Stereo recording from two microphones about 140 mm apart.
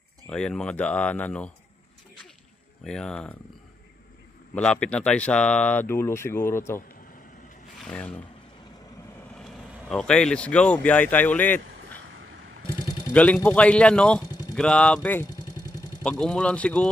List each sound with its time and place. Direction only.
0.3 s speech: 5° left (ahead or behind)
2.8 s speech: 5° left (ahead or behind)
4.6 s speech: 10° left (ahead or behind)
7.8 s speech: 10° left (ahead or behind)
9.3 s speech: 5° left (ahead or behind)
13.1 s speech: 10° left (ahead or behind)
14.2 s a sound: 30° left (ahead or behind)
14.5 s speech: 5° left (ahead or behind)